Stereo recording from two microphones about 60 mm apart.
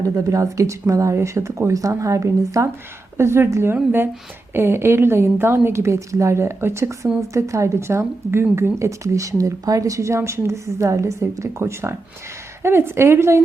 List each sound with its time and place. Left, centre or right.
0.0 s speech: right
3.2 s speech: right
7.3 s speech: right